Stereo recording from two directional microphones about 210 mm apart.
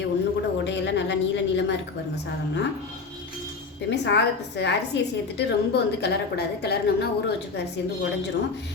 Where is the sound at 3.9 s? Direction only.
55° left (ahead or behind).